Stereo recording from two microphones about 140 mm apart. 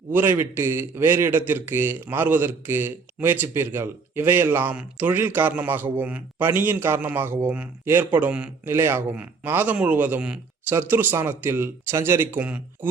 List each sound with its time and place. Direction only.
0.1 s a man's voice: 15° right (ahead or behind)